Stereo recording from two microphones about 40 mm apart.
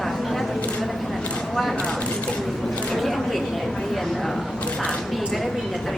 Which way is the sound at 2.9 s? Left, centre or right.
Centre.